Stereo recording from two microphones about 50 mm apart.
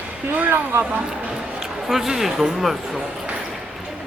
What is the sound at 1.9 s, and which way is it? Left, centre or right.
Speech, centre.